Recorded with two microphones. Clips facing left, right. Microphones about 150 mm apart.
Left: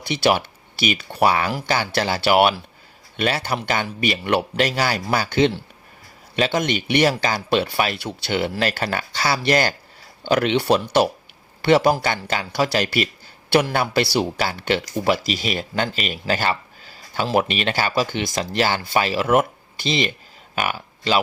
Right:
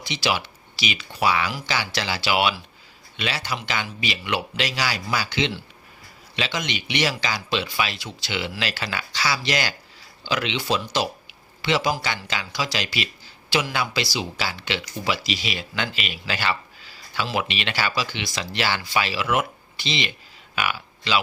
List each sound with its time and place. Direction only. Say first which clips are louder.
0.1 s speech: left 7 dB; 55° left (ahead or behind)